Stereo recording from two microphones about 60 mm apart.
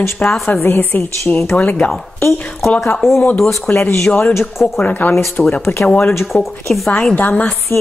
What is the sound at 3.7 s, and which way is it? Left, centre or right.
Speech, left.